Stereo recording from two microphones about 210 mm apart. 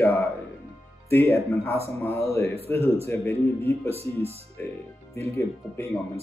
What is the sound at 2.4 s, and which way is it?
Speech, 30° right (ahead or behind).